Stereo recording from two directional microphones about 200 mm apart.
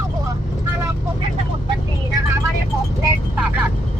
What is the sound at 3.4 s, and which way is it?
Speech, 10° right (ahead or behind).